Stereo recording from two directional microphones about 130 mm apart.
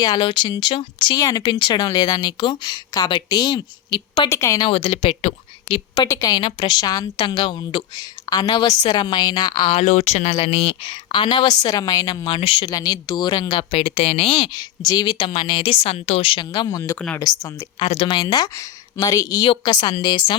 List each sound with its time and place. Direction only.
0.0 s a woman's voice: 35° left (ahead or behind)
1.1 s a woman's voice: 25° left (ahead or behind)
4.3 s speech: 20° left (ahead or behind)
4.7 s speech: 45° left (ahead or behind)
6.1 s a woman's voice: 30° left (ahead or behind)
9.7 s a woman's voice: 65° left (ahead or behind); by 12.6 s 45° left (ahead or behind)
12.6 s a woman's voice: 30° left (ahead or behind); by 16.5 s 45° left (ahead or behind)
16.5 s speech: 30° left (ahead or behind)
17.7 s speech: 50° left (ahead or behind)
18.2 s a woman's voice: 30° left (ahead or behind)